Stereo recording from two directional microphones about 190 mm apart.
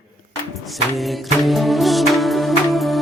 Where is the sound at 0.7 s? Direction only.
Centre (ahead or behind).